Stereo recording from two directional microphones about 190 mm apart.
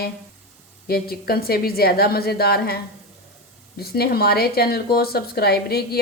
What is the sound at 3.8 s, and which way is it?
Speech, 55° left (ahead or behind).